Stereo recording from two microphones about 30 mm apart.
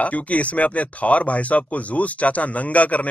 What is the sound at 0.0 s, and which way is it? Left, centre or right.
Speech, left.